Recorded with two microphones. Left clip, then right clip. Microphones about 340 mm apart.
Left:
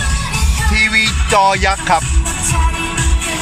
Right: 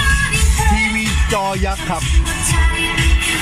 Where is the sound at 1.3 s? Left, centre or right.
Left.